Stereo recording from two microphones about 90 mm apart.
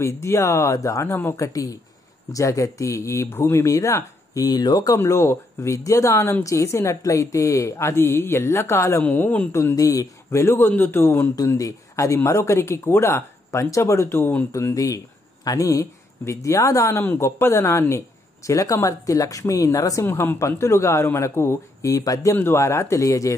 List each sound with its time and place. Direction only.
0.0 s speech: 30° left (ahead or behind)
1.0 s a man's voice: 20° left (ahead or behind)
1.3 s speech: 40° left (ahead or behind)
9.0 s a man's voice: 20° left (ahead or behind)
11.3 s speech: 40° left (ahead or behind)
14.5 s speech: 40° left (ahead or behind)
17.0 s speech: 25° left (ahead or behind); by 20.1 s 40° left (ahead or behind)
20.1 s speech: 25° left (ahead or behind)